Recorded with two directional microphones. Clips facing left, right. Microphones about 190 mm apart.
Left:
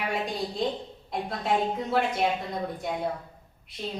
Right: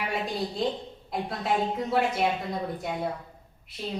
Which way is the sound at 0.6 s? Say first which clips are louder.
Even; centre (ahead or behind).